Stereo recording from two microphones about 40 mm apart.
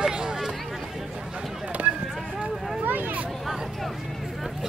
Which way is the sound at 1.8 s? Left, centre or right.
Right.